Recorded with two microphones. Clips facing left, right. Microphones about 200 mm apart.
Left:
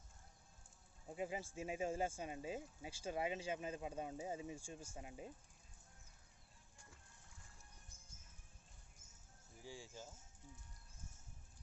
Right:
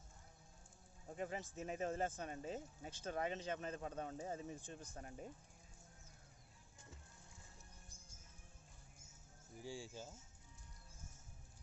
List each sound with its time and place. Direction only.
1.1 s speech: 10° left (ahead or behind)
9.8 s speech: 15° right (ahead or behind)